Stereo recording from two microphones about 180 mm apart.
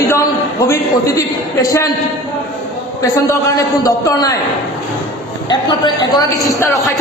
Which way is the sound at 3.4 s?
20° left (ahead or behind).